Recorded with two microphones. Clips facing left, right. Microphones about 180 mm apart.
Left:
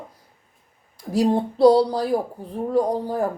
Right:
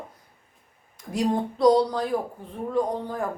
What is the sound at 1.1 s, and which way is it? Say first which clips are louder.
Speech: left 5 dB; 30° left (ahead or behind).